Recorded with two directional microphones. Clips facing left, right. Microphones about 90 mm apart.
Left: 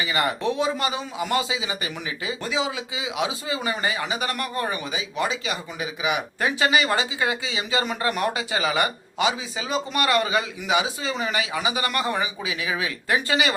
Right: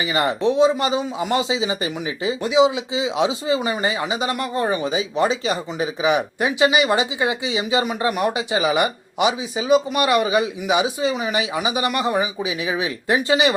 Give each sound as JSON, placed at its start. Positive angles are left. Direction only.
{"t": 0.0, "sound": "speech", "side_deg": -25}
{"t": 6.4, "sound": "speech", "side_deg": -20}